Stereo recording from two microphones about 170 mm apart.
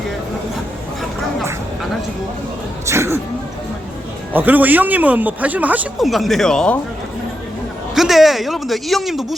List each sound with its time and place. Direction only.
2.8 s speech: 15° right (ahead or behind)
4.4 s speech: 10° right (ahead or behind)
7.9 s speech: centre (ahead or behind)